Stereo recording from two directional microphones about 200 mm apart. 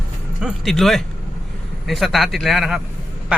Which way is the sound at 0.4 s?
Centre (ahead or behind).